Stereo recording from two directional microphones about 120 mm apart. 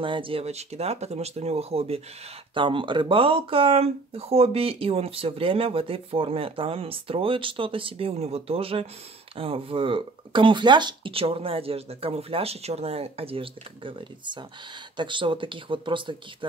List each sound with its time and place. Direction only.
0.0 s speech: 45° right (ahead or behind)
2.5 s speech: 45° right (ahead or behind)